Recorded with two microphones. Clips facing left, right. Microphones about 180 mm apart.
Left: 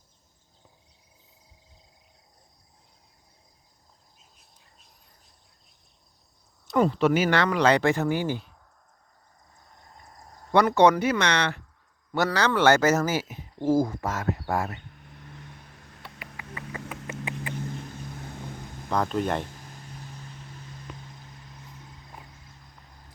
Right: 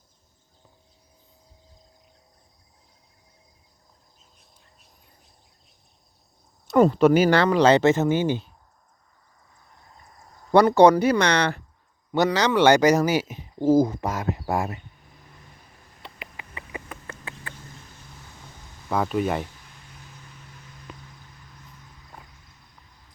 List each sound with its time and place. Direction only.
6.7 s speech: 45° right (ahead or behind); by 8.4 s 20° right (ahead or behind)
10.5 s speech: 35° right (ahead or behind)
12.1 s speech: 20° right (ahead or behind)
16.0 s a sound: 20° right (ahead or behind)
17.1 s vehicle: 15° left (ahead or behind)
18.9 s speech: 5° right (ahead or behind)